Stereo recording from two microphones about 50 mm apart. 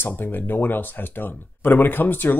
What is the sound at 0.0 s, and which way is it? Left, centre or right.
Speech, left.